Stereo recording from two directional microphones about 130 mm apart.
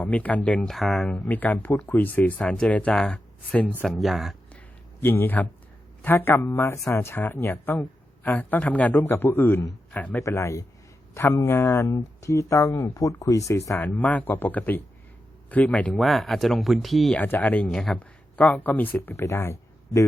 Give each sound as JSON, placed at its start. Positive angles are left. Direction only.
{"t": 0.0, "sound": "speech", "side_deg": 10}
{"t": 1.3, "sound": "speech", "side_deg": 15}
{"t": 4.9, "sound": "speech", "side_deg": 15}
{"t": 10.2, "sound": "speech", "side_deg": 20}
{"t": 13.7, "sound": "speech", "side_deg": 10}
{"t": 17.2, "sound": "speech", "side_deg": 10}